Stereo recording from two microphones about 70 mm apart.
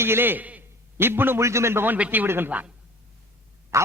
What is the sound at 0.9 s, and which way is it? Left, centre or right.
A man's voice, right.